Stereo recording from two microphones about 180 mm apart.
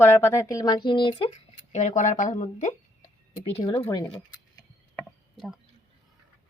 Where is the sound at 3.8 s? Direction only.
20° left (ahead or behind).